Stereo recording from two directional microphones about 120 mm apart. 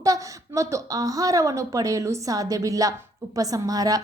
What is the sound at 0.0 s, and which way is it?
A woman's voice, 25° right (ahead or behind).